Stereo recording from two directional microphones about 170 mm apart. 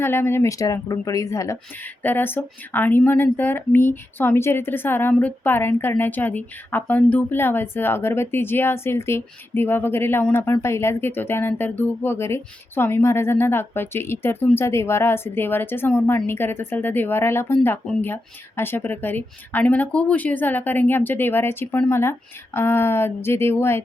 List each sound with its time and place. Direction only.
0.0 s speech: 15° left (ahead or behind)